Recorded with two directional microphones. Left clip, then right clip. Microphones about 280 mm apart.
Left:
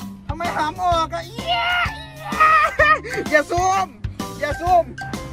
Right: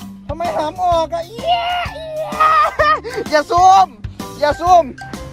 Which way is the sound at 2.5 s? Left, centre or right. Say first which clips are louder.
Right 3 dB; centre.